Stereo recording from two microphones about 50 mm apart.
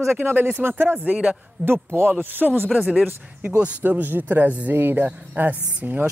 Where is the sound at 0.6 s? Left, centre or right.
Right.